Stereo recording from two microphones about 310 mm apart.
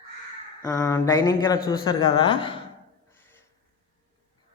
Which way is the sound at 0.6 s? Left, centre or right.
Centre.